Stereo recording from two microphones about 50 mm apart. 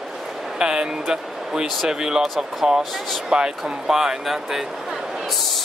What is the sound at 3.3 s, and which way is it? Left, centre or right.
Speech, centre.